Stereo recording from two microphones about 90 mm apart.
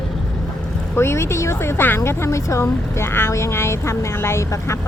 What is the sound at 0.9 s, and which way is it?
A woman's voice, 30° left (ahead or behind).